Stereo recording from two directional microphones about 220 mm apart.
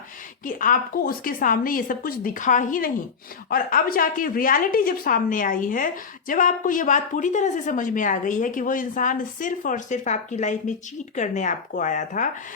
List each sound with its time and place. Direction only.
0.4 s a woman's voice: 40° left (ahead or behind)